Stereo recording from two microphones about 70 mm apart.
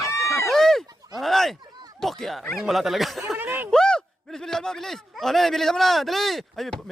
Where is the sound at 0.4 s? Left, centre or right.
Centre.